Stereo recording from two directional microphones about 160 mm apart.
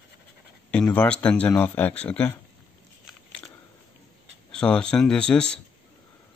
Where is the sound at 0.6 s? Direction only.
5° left (ahead or behind).